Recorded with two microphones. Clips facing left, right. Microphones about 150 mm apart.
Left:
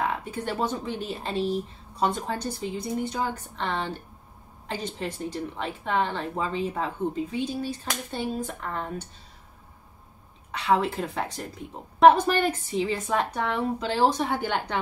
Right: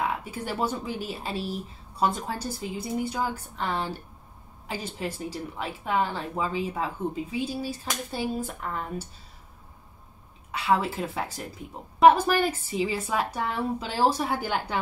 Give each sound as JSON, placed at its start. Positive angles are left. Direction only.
{"t": 0.2, "sound": "a woman's voice", "side_deg": -10}
{"t": 10.5, "sound": "a woman's voice", "side_deg": -5}